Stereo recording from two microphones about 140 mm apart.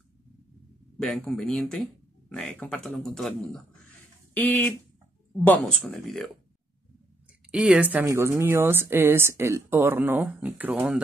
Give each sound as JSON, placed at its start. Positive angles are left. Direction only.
{"t": 0.9, "sound": "speech", "side_deg": 5}
{"t": 7.5, "sound": "a woman's voice", "side_deg": -10}